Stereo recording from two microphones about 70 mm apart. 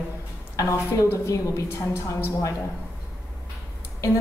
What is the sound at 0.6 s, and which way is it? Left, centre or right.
A woman's voice, left.